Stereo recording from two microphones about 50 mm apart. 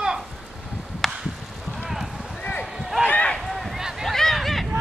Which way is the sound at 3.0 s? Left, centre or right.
Left.